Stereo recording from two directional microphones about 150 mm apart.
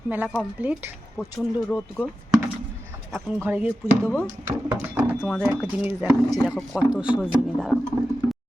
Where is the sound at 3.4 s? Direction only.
10° right (ahead or behind).